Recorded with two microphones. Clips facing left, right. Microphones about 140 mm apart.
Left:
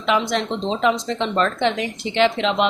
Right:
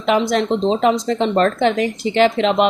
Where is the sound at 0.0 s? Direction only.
45° right (ahead or behind).